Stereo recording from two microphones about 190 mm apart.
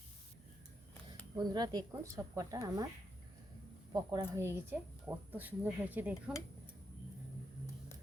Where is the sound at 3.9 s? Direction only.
20° right (ahead or behind).